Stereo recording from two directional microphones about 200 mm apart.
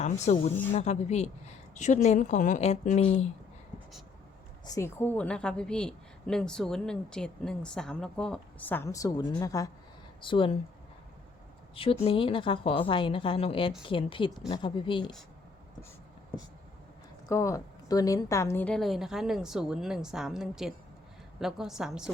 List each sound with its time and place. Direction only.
0.0 s a woman's voice: 35° left (ahead or behind)
4.6 s a woman's voice: 15° left (ahead or behind)
11.7 s a woman's voice: 25° left (ahead or behind)
17.2 s a woman's voice: 15° left (ahead or behind); by 22.1 s centre (ahead or behind)